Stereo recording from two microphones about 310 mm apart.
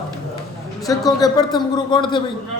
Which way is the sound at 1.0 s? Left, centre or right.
Centre.